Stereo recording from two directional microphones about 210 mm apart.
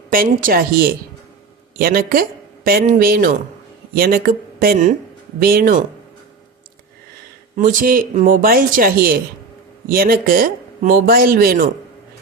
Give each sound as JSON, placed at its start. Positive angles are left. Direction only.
{"t": 0.1, "sound": "speech", "side_deg": -45}
{"t": 7.5, "sound": "speech", "side_deg": -40}